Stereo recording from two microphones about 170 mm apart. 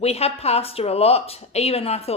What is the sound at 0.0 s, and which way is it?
Speech, 35° left (ahead or behind).